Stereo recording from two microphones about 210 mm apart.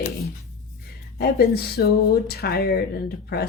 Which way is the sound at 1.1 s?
50° left (ahead or behind).